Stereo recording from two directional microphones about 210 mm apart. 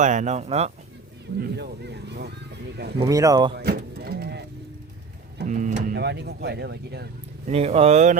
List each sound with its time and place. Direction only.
0.0 s speech: 35° right (ahead or behind)
1.4 s speech: 50° right (ahead or behind)
3.0 s speech: 15° right (ahead or behind)
3.6 s vehicle: 50° right (ahead or behind)
5.4 s speech: 35° right (ahead or behind)
6.0 s speech: 55° right (ahead or behind)
7.4 s speech: 30° right (ahead or behind)